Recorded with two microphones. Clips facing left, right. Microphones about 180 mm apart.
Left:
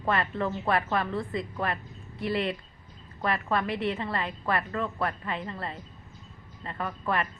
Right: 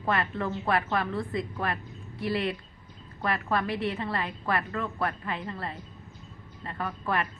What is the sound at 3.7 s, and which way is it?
Speech, 25° left (ahead or behind).